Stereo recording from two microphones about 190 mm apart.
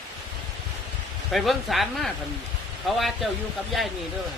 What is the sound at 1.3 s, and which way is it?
Speech, centre (ahead or behind).